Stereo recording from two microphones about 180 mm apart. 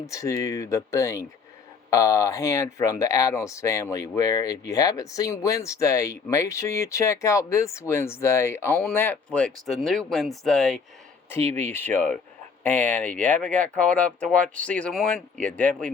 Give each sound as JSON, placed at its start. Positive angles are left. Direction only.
{"t": 0.0, "sound": "speech", "side_deg": 15}
{"t": 11.3, "sound": "speech", "side_deg": 15}